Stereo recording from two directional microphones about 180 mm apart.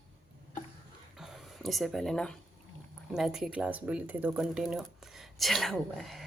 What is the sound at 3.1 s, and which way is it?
Speech, 5° right (ahead or behind).